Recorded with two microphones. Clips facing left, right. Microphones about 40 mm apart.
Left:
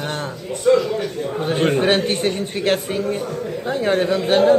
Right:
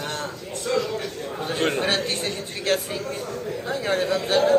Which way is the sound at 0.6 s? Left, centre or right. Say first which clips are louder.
Left 9 dB; centre.